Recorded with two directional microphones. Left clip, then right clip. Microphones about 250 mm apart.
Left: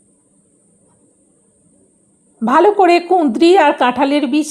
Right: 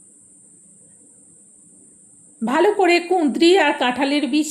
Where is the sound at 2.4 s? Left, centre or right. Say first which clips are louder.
Left 6 dB; centre.